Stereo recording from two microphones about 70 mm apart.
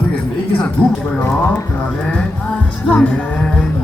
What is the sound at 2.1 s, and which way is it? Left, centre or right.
Music, centre.